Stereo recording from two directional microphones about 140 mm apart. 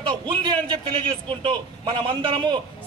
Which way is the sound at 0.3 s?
35° right (ahead or behind).